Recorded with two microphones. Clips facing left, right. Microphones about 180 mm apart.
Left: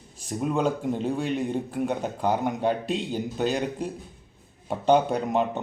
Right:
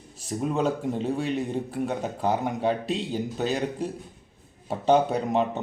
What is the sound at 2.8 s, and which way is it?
Speech, 40° right (ahead or behind).